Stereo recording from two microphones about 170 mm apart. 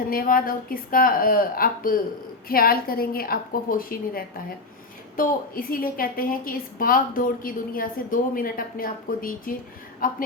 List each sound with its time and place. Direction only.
0.1 s a woman's voice: 60° left (ahead or behind)